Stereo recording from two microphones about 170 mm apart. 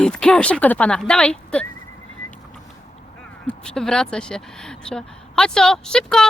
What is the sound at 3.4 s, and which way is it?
Speech, 5° left (ahead or behind).